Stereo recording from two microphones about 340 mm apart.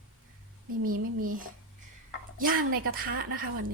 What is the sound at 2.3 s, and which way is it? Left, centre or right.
Speech, right.